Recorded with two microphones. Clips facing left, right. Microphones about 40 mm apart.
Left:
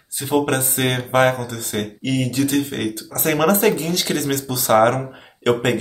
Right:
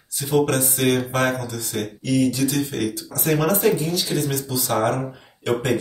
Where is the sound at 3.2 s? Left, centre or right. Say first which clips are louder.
Left 3 dB; left.